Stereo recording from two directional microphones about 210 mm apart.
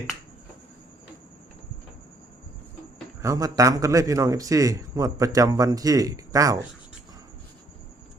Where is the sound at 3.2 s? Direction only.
15° right (ahead or behind).